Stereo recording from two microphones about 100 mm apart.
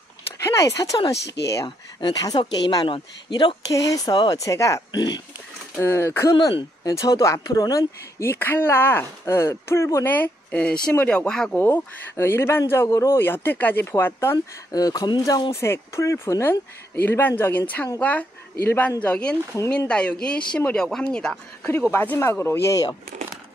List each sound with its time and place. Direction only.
0.4 s a sound: 30° left (ahead or behind)
0.9 s speech: 35° left (ahead or behind)
3.7 s speech: 35° left (ahead or behind)
8.2 s speech: 25° left (ahead or behind); by 11.5 s 5° left (ahead or behind)
11.5 s speech: 20° left (ahead or behind)
14.7 s speech: 40° left (ahead or behind)
15.5 s speech: 25° left (ahead or behind); by 21.4 s 10° left (ahead or behind)
21.9 s speech: 25° left (ahead or behind)